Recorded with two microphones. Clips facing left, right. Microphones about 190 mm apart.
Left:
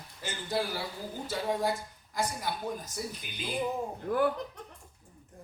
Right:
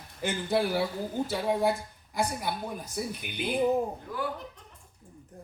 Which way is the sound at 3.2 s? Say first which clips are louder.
Right 6 dB; 60° right (ahead or behind).